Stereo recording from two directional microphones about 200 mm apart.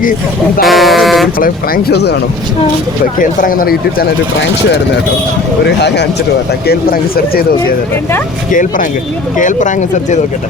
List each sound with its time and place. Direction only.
0.6 s speech: centre (ahead or behind)
1.4 s speech: 50° left (ahead or behind)
3.2 s speech: 45° left (ahead or behind)
8.4 s speech: 40° left (ahead or behind)